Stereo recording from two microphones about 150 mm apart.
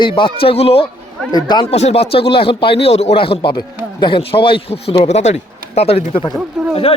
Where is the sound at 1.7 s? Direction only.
45° left (ahead or behind).